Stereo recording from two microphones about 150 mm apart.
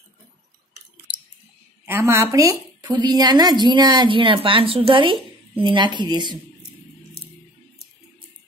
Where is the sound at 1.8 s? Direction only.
15° right (ahead or behind).